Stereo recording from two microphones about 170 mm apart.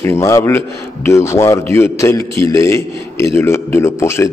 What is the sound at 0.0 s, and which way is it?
A man's voice, 15° left (ahead or behind).